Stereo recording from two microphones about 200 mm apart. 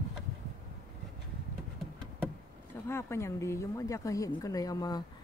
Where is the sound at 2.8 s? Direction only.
15° left (ahead or behind).